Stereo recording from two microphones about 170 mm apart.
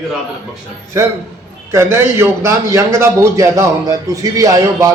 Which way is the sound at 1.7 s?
15° right (ahead or behind).